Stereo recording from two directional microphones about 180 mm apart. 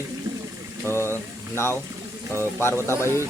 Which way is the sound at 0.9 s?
15° left (ahead or behind).